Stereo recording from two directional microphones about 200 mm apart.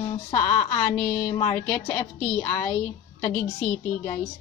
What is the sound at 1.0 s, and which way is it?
A woman's voice, 5° left (ahead or behind).